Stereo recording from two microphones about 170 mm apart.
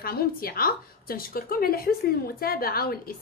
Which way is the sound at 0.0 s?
60° left (ahead or behind).